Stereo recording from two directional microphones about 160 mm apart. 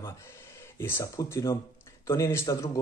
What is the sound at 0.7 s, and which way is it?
Speech, 15° left (ahead or behind).